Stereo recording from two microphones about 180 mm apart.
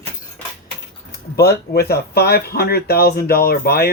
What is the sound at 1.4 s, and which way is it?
Speech, 60° left (ahead or behind).